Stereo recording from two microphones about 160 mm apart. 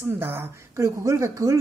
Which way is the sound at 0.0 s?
15° right (ahead or behind).